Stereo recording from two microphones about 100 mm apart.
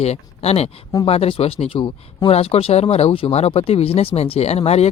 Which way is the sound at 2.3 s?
90° left.